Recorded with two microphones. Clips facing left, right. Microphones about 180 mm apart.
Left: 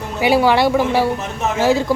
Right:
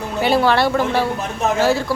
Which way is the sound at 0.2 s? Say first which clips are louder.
Left 2 dB; 10° left (ahead or behind).